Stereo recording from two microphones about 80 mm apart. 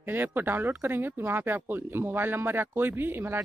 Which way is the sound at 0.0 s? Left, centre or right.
Right.